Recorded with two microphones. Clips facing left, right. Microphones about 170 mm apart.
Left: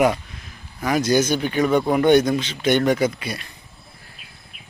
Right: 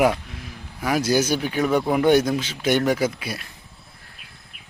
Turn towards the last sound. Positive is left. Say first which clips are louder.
# left 2 dB
turn(degrees=-5)  # may be behind; listen again after turning